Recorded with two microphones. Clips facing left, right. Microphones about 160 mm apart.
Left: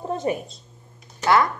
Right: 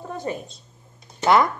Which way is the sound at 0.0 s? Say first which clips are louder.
Left 5 dB; 25° left (ahead or behind).